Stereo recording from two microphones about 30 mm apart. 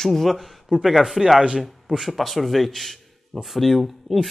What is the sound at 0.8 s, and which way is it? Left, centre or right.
A man's voice, centre.